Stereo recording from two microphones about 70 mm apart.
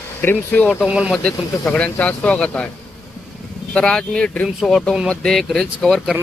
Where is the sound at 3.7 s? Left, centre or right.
Centre.